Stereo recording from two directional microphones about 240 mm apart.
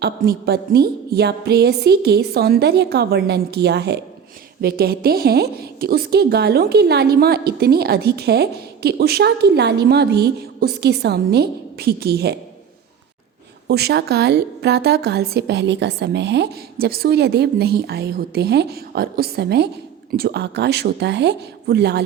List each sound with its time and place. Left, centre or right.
0.0 s a woman's voice: right
13.7 s a woman's voice: right